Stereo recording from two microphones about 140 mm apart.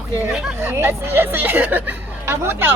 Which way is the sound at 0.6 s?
15° right (ahead or behind).